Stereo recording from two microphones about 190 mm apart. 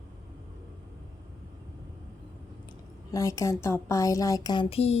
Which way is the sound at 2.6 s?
15° left (ahead or behind).